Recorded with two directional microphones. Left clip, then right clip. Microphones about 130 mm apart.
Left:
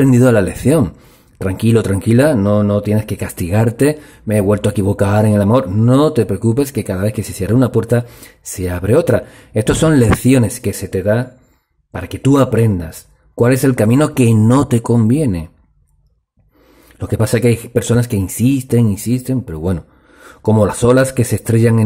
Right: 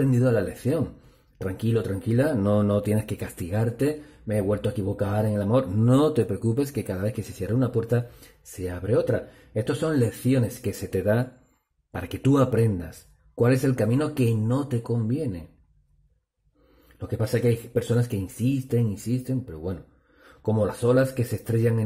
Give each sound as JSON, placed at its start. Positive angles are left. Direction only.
{"t": 0.0, "sound": "speech", "side_deg": 40}
{"t": 2.4, "sound": "speech", "side_deg": 15}
{"t": 6.2, "sound": "speech", "side_deg": 25}
{"t": 10.6, "sound": "speech", "side_deg": 25}
{"t": 17.0, "sound": "speech", "side_deg": 40}